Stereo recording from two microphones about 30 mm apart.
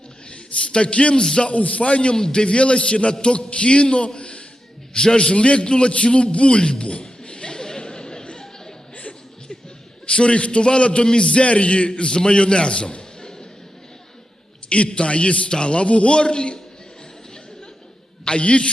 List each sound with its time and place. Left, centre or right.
0.3 s a man's voice: left
1.2 s a man's voice: left
1.5 s a man's voice: left
2.1 s a man's voice: left
7.0 s a sound: left
10.1 s a man's voice: left
14.8 s a man's voice: left
15.4 s a man's voice: left
18.3 s a man's voice: left